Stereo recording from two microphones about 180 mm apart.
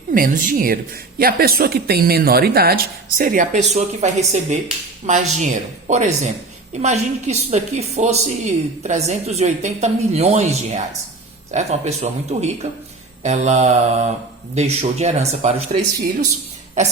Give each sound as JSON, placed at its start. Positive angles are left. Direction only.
{"t": 0.1, "sound": "a woman's voice", "side_deg": -50}